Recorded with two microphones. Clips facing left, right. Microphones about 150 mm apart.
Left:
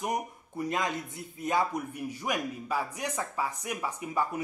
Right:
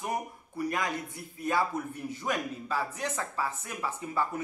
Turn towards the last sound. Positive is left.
turn(degrees=15)  # may be behind; listen again after turning